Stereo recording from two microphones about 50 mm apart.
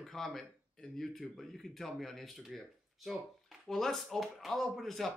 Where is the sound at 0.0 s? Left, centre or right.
Centre.